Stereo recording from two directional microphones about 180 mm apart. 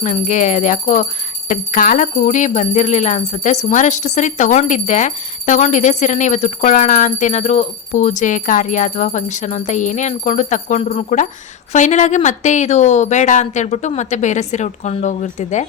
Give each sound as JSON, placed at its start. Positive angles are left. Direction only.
{"t": 0.0, "sound": "speech", "side_deg": 45}